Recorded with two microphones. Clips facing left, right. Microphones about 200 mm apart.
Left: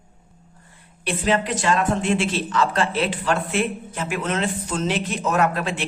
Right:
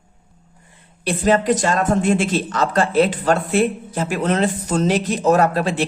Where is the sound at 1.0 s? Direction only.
40° right (ahead or behind).